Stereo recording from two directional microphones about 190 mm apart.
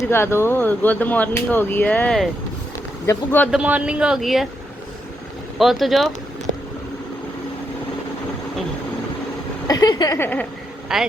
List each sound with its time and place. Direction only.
0.1 s speech: 15° left (ahead or behind)
3.5 s speech: 5° right (ahead or behind)
5.5 s speech: centre (ahead or behind)
9.6 s a sound: 20° left (ahead or behind)
10.9 s speech: centre (ahead or behind)